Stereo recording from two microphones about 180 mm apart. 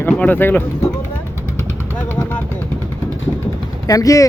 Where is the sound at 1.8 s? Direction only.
10° left (ahead or behind).